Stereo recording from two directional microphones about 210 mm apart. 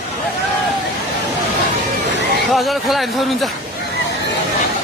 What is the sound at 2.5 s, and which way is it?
Speech, centre (ahead or behind).